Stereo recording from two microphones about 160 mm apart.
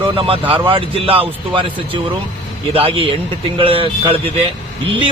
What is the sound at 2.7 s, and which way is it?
A man's voice, 35° right (ahead or behind).